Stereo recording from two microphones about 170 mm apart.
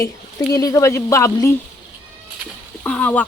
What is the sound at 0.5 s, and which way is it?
Speech, 20° left (ahead or behind).